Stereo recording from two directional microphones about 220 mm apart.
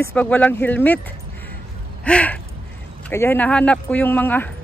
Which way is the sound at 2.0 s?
5° left (ahead or behind).